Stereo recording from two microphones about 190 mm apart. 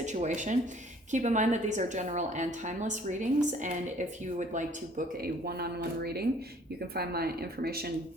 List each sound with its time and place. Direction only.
0.0 s a woman's voice: 40° right (ahead or behind); by 7.9 s 55° right (ahead or behind)